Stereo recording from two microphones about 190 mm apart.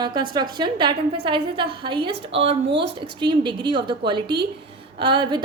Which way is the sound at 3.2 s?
25° right (ahead or behind).